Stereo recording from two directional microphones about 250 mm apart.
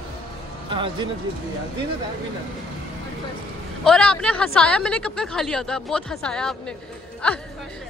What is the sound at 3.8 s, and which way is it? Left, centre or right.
Speech, centre.